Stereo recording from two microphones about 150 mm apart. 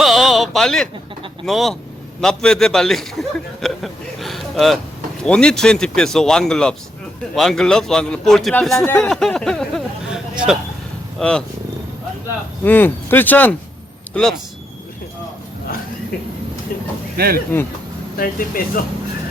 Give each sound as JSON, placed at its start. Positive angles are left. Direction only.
{"t": 0.0, "sound": "a sound", "side_deg": 0}
{"t": 1.5, "sound": "a man's voice", "side_deg": 0}
{"t": 8.9, "sound": "a sound", "side_deg": 5}
{"t": 11.2, "sound": "a man's voice", "side_deg": 5}
{"t": 12.6, "sound": "speech", "side_deg": 15}
{"t": 17.2, "sound": "speech", "side_deg": -75}
{"t": 18.2, "sound": "speech", "side_deg": 75}